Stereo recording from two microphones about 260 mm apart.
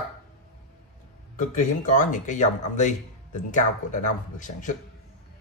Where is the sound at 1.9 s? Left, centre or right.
Left.